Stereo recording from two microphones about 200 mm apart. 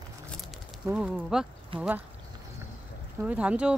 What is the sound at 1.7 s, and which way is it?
Speech, 25° right (ahead or behind).